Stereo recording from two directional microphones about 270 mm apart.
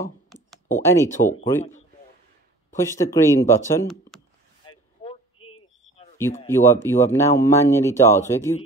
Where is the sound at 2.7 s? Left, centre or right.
Centre.